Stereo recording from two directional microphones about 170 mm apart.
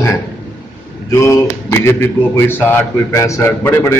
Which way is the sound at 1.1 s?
15° left (ahead or behind).